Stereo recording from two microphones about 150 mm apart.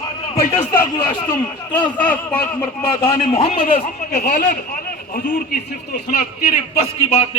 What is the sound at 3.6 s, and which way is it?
Speech, 60° left (ahead or behind).